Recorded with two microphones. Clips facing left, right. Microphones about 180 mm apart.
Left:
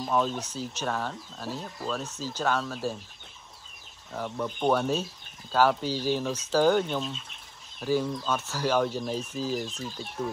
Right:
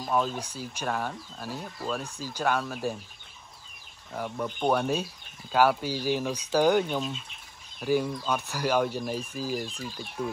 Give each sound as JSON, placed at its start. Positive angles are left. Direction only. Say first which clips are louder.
{"t": 0.0, "sound": "speech", "louder": "left 1 dB", "side_deg": -5}
{"t": 4.1, "sound": "speech", "louder": "even", "side_deg": -5}